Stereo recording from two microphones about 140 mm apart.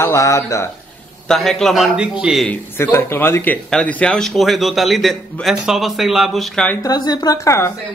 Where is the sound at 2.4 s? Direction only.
15° left (ahead or behind).